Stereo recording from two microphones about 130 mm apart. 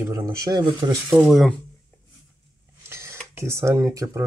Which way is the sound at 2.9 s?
20° right (ahead or behind).